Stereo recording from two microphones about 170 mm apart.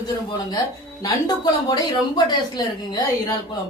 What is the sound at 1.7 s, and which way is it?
A woman's voice, 25° left (ahead or behind).